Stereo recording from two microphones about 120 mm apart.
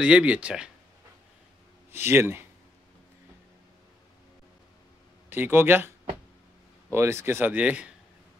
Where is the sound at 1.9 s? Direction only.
20° right (ahead or behind).